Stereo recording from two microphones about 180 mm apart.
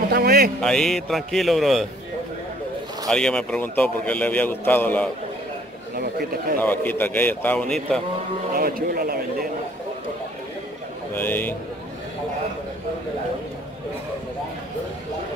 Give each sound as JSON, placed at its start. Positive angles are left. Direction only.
{"t": 0.1, "sound": "music", "side_deg": -60}
{"t": 0.6, "sound": "a man's voice", "side_deg": 5}
{"t": 3.1, "sound": "a man's voice", "side_deg": 5}
{"t": 5.9, "sound": "a man's voice", "side_deg": -55}
{"t": 6.6, "sound": "a man's voice", "side_deg": 10}
{"t": 8.5, "sound": "a man's voice", "side_deg": -55}
{"t": 11.1, "sound": "a man's voice", "side_deg": 10}